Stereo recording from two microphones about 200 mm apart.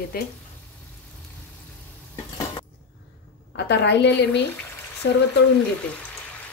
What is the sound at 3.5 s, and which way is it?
A woman's voice, 60° left (ahead or behind).